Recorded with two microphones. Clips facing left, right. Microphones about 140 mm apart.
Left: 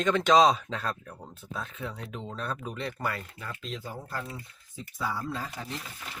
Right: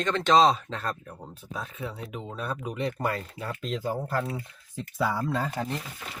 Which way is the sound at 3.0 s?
30° right (ahead or behind).